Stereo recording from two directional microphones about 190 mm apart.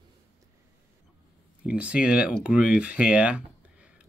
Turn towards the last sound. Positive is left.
turn(degrees=-5)  # may be behind; listen again after turning